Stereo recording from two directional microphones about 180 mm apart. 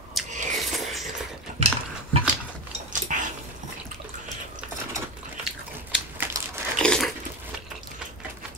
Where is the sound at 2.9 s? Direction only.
45° right (ahead or behind).